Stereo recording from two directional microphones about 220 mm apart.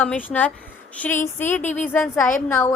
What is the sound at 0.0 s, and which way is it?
A woman's voice, 5° left (ahead or behind).